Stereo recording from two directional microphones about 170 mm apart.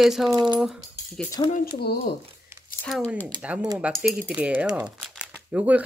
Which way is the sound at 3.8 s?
Centre (ahead or behind).